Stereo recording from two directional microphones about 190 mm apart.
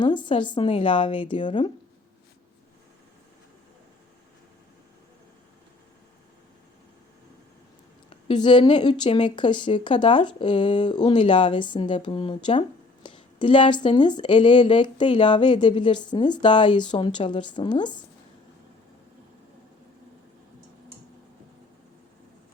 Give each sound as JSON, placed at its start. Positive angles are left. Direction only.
{"t": 0.0, "sound": "a woman's voice", "side_deg": 25}
{"t": 8.3, "sound": "a woman's voice", "side_deg": 25}